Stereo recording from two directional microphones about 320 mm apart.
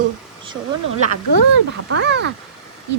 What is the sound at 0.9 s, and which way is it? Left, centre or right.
Speech, right.